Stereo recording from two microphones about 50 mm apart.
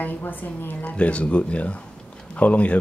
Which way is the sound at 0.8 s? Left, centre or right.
Left.